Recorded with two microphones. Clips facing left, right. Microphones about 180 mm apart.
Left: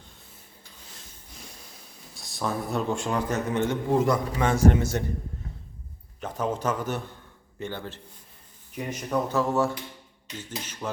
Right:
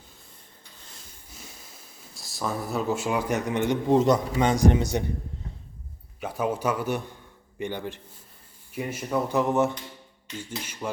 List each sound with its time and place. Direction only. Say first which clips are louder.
0.9 s a sound: even; centre (ahead or behind)
2.1 s a man's voice: left 1 dB; centre (ahead or behind)
6.1 s a man's voice: right 1 dB; 10° right (ahead or behind)
9.4 s a man's voice: right 1 dB; 20° right (ahead or behind)